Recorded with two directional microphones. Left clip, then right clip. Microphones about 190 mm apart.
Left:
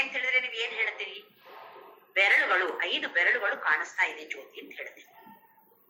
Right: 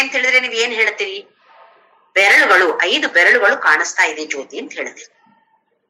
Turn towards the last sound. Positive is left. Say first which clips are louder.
# right 15 dB
turn(degrees=-55)  # may be behind; listen again after turning